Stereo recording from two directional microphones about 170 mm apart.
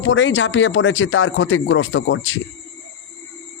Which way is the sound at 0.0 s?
90° left.